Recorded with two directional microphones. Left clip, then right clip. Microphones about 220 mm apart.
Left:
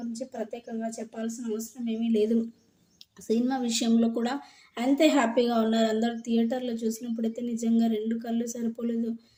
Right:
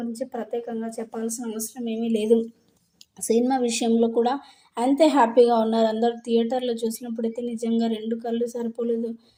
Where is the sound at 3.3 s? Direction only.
15° right (ahead or behind).